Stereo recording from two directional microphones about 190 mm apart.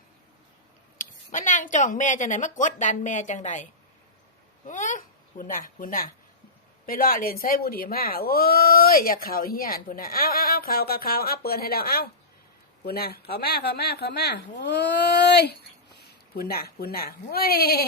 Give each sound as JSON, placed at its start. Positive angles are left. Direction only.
{"t": 0.9, "sound": "a woman's voice", "side_deg": 40}